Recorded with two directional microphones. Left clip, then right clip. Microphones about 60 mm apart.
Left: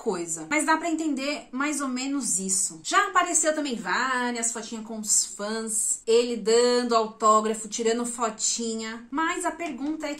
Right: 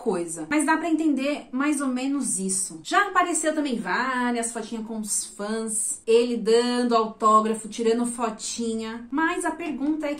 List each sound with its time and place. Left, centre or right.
0.0 s a woman's voice: centre
6.0 s speech: left